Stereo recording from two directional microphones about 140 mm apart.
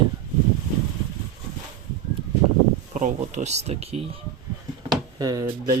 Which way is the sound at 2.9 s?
60° right (ahead or behind).